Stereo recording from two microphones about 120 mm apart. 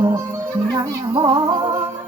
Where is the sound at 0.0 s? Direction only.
25° right (ahead or behind).